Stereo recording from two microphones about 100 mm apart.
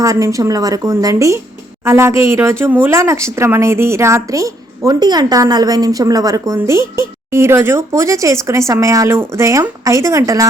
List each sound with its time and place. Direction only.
0.0 s a woman's voice: 30° right (ahead or behind)